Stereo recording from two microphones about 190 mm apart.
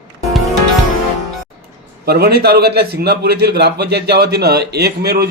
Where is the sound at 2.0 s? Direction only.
55° right (ahead or behind).